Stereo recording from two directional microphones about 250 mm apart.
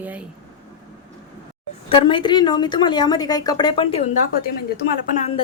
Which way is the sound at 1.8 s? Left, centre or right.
Centre.